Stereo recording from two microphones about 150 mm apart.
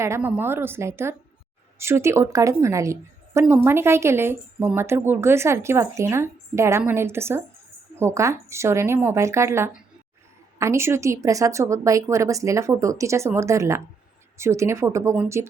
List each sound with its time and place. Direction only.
0.0 s a woman's voice: 15° right (ahead or behind)